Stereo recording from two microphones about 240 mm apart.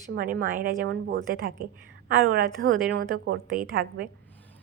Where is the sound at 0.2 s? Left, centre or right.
Right.